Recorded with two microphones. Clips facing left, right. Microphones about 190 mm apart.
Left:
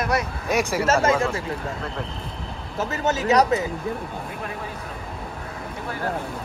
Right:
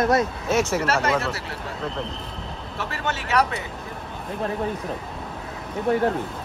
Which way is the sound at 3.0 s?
40° left (ahead or behind).